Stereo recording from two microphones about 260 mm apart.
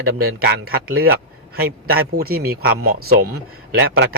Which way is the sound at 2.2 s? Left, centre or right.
Right.